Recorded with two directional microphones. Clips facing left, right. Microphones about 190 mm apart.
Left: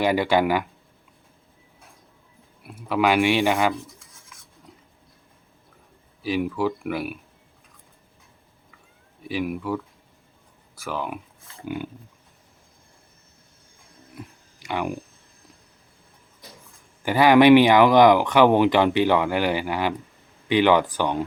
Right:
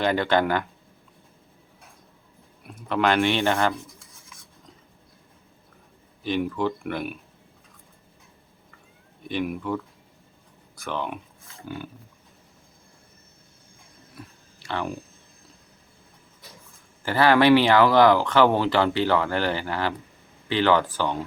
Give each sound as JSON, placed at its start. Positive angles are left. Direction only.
{"t": 0.0, "sound": "speech", "side_deg": 10}
{"t": 2.6, "sound": "speech", "side_deg": 5}
{"t": 6.2, "sound": "speech", "side_deg": 5}
{"t": 9.2, "sound": "speech", "side_deg": 5}
{"t": 11.6, "sound": "pig", "side_deg": 15}
{"t": 14.2, "sound": "a sound", "side_deg": 15}
{"t": 17.0, "sound": "speech", "side_deg": 15}